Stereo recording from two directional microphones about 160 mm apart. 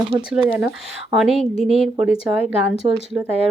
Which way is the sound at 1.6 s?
40° right (ahead or behind).